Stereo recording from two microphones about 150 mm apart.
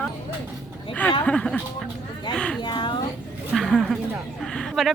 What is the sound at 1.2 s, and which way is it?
Speech, 5° left (ahead or behind).